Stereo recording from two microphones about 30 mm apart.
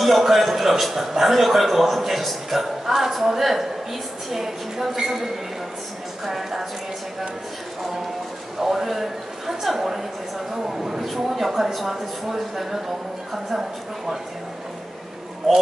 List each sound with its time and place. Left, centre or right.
0.0 s a man's voice: centre
8.5 s a man's voice: centre